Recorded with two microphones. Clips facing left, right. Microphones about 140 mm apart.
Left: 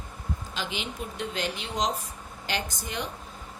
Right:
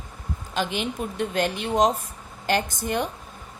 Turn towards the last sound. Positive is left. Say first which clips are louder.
# right 7 dB
turn(degrees=-50)  # may be behind; listen again after turning